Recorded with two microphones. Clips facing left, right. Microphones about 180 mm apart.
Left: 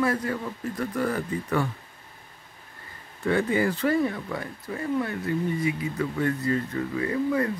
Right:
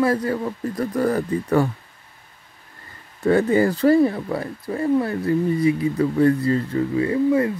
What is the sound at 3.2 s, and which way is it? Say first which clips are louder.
Speech: right 6 dB; 40° right (ahead or behind).